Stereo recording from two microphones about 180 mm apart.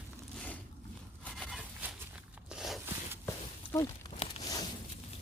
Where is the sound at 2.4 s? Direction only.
Centre (ahead or behind).